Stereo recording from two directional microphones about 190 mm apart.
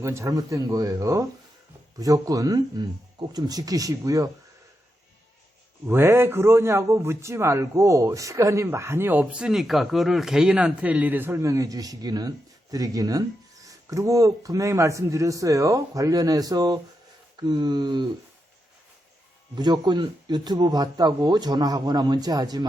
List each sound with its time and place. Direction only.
0.0 s a man's voice: 15° right (ahead or behind)
5.9 s a man's voice: 10° right (ahead or behind)
19.5 s speech: 20° right (ahead or behind)